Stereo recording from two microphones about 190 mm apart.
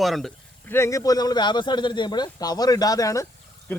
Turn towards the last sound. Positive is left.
turn(degrees=10)  # may be behind; listen again after turning